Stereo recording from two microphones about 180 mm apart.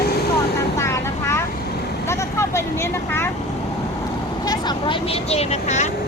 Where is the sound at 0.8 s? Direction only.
15° left (ahead or behind).